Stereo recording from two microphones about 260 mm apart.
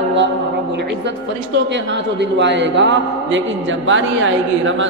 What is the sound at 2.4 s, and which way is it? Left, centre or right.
Speech, right.